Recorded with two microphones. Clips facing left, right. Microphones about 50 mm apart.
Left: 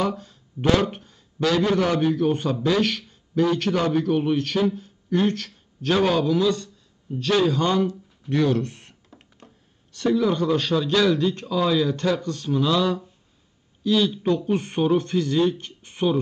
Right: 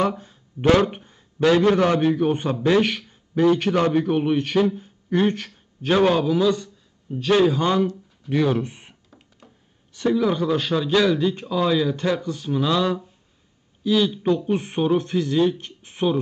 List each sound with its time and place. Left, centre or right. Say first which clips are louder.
0.1 s a man's voice: left 1 dB; centre
9.9 s speech: even; centre